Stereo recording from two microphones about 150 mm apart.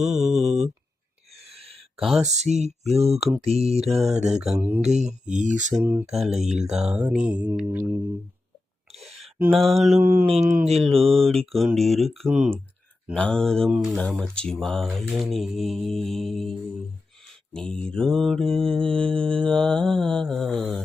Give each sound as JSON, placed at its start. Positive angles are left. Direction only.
{"t": 0.0, "sound": "mantra", "side_deg": 0}
{"t": 1.5, "sound": "a sound", "side_deg": -40}
{"t": 2.0, "sound": "speech", "side_deg": 0}
{"t": 2.2, "sound": "speech", "side_deg": -50}
{"t": 3.8, "sound": "mantra", "side_deg": 0}
{"t": 4.8, "sound": "speech", "side_deg": -50}
{"t": 5.3, "sound": "mantra", "side_deg": -55}
{"t": 5.8, "sound": "mantra", "side_deg": -15}
{"t": 6.1, "sound": "mantra", "side_deg": 0}
{"t": 8.9, "sound": "a sound", "side_deg": -45}
{"t": 9.5, "sound": "mantra", "side_deg": 0}
{"t": 10.0, "sound": "mantra", "side_deg": -15}
{"t": 10.8, "sound": "mantra", "side_deg": 0}
{"t": 13.1, "sound": "mantra", "side_deg": 5}